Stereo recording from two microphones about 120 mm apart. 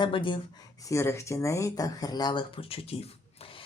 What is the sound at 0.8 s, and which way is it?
Speech, 25° left (ahead or behind).